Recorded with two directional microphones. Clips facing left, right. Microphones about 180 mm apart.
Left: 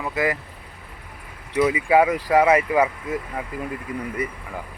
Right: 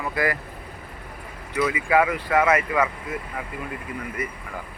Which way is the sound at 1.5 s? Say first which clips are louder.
Left 3 dB; 25° left (ahead or behind).